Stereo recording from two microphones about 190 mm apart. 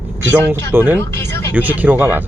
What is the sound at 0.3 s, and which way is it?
Speech, 10° right (ahead or behind).